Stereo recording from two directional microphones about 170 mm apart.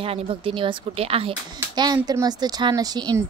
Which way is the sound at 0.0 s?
35° right (ahead or behind).